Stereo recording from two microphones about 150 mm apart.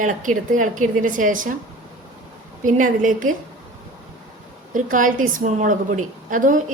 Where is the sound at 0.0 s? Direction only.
60° right (ahead or behind).